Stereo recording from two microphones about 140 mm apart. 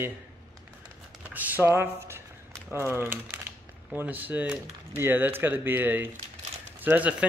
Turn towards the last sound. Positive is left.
turn(degrees=-10)  # may be behind; listen again after turning